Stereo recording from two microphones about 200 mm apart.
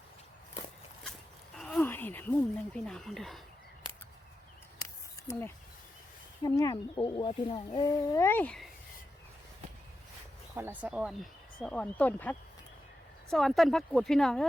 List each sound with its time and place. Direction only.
1.5 s speech: 5° left (ahead or behind)
6.4 s speech: 20° left (ahead or behind)
10.5 s speech: 10° right (ahead or behind)